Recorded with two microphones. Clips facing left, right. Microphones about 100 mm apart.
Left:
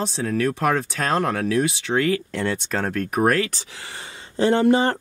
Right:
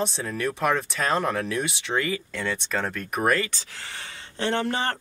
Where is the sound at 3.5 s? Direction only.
15° left (ahead or behind).